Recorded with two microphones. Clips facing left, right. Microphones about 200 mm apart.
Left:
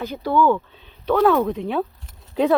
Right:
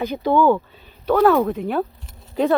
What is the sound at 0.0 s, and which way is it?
Speech, 20° right (ahead or behind).